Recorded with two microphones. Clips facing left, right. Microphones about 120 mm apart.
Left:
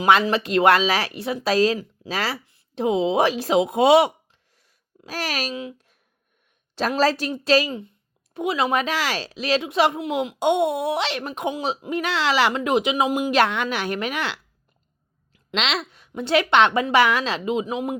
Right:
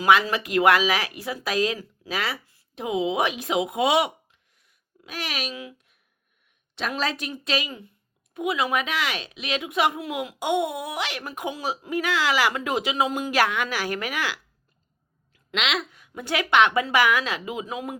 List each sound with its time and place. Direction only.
0.0 s speech: 30° left (ahead or behind)
5.5 s speech: 25° left (ahead or behind)